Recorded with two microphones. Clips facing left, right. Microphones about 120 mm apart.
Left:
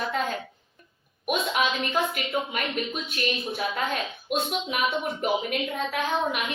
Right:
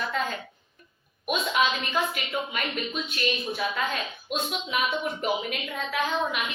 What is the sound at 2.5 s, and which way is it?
A woman's voice, 50° left (ahead or behind).